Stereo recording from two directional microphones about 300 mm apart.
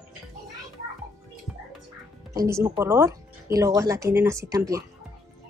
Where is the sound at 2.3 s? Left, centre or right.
Centre.